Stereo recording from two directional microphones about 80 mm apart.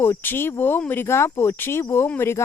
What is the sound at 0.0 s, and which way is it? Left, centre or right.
Speech, left.